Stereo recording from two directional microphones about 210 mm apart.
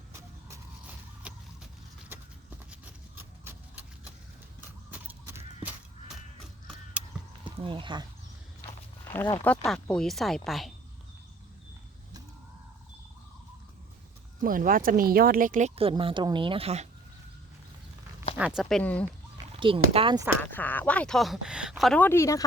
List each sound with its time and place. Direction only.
0.1 s a sound: 15° right (ahead or behind)
1.2 s vehicle: 5° right (ahead or behind)
3.2 s a sound: 10° right (ahead or behind)
4.9 s a sound: 10° right (ahead or behind)
7.6 s a woman's voice: 25° right (ahead or behind)
9.1 s speech: 10° left (ahead or behind)
14.4 s a woman's voice: 40° right (ahead or behind)
18.3 s speech: 5° right (ahead or behind)
19.5 s a woman's voice: 25° right (ahead or behind)
20.4 s speech: 10° left (ahead or behind)